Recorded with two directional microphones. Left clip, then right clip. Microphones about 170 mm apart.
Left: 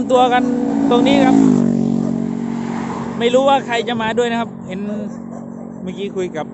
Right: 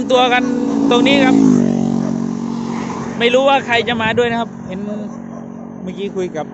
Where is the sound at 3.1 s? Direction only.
10° left (ahead or behind).